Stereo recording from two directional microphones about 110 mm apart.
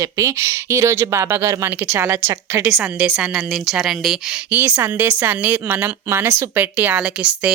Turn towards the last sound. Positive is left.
turn(degrees=-10)  # may be behind; listen again after turning